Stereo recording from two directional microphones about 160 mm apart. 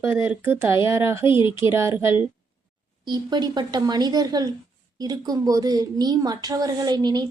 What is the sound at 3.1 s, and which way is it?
A woman's voice, 25° right (ahead or behind).